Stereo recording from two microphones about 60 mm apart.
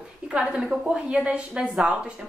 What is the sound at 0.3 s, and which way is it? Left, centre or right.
A woman's voice, right.